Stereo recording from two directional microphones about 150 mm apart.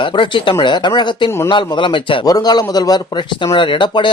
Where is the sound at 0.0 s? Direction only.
35° left (ahead or behind).